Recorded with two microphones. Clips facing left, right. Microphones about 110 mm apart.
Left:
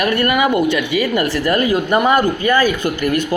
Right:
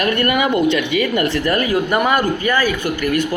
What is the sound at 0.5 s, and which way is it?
A man's voice, 15° left (ahead or behind).